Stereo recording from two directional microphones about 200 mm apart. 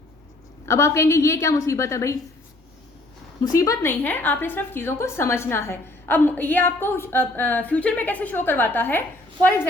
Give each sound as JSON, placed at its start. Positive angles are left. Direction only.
{"t": 0.6, "sound": "a woman's voice", "side_deg": 15}
{"t": 3.4, "sound": "a woman's voice", "side_deg": 15}